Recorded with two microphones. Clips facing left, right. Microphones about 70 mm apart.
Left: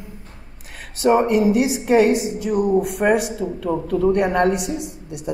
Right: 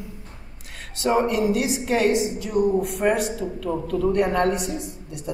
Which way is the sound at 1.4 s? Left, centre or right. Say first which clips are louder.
Left 5 dB; centre.